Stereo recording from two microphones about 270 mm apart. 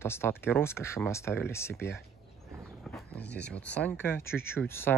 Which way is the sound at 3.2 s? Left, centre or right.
Left.